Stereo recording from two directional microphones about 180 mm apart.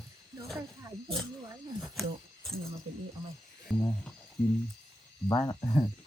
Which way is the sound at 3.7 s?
5° left (ahead or behind).